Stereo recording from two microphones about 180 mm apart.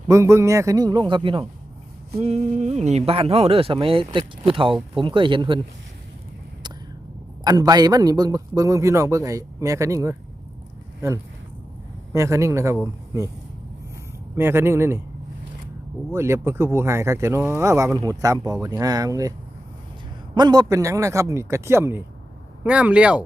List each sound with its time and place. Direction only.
0.1 s a man's voice: 15° right (ahead or behind)
7.4 s a man's voice: 20° right (ahead or behind)
12.1 s a man's voice: 15° right (ahead or behind)
14.3 s a man's voice: 15° right (ahead or behind)
16.1 s a man's voice: 15° right (ahead or behind)
20.3 s a man's voice: 20° right (ahead or behind); by 23.2 s 5° right (ahead or behind)